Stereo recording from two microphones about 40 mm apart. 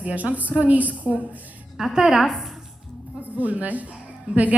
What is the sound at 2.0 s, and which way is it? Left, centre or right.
Speech, centre.